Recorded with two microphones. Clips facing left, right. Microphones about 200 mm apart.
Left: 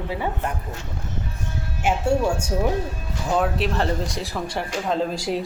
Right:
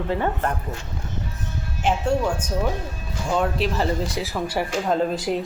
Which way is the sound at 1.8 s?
10° left (ahead or behind).